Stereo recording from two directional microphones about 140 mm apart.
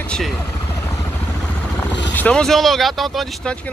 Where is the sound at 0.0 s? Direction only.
5° left (ahead or behind).